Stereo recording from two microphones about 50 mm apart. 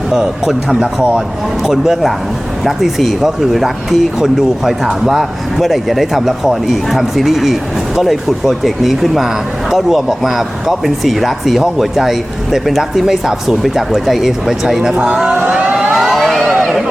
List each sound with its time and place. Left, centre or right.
0.1 s speech: centre
15.5 s vehicle: right
15.9 s vehicle: centre
16.1 s a sound: centre